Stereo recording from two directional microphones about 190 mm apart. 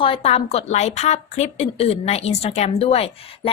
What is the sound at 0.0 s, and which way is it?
A woman's voice, 30° left (ahead or behind).